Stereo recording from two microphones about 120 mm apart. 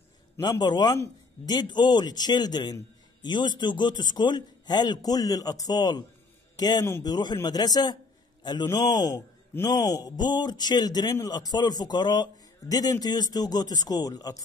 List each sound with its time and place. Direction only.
0.4 s a man's voice: 35° left (ahead or behind)